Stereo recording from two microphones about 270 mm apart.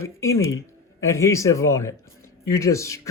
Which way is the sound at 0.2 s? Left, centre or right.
Centre.